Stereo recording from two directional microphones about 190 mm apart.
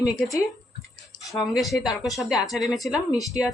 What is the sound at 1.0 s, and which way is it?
Speech, centre (ahead or behind).